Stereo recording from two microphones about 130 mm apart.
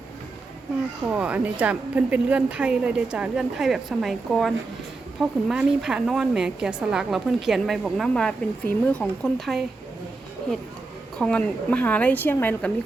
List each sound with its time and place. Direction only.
1.1 s a woman's voice: 10° right (ahead or behind)
11.2 s a woman's voice: 10° left (ahead or behind)